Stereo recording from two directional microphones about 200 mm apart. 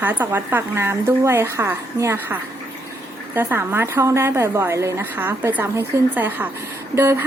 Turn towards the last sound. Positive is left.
turn(degrees=-15)  # may be behind; listen again after turning